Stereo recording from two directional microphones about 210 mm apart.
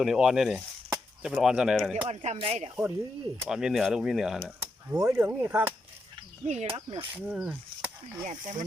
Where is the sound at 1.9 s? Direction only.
30° right (ahead or behind).